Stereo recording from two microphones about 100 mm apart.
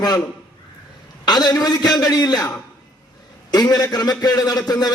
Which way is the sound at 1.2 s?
45° left (ahead or behind).